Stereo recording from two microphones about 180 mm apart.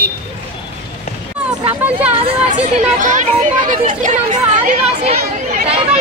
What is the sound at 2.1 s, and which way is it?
Chatter, 30° right (ahead or behind).